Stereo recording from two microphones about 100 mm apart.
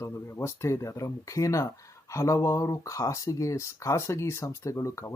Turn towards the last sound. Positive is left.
turn(degrees=30)  # may be behind; listen again after turning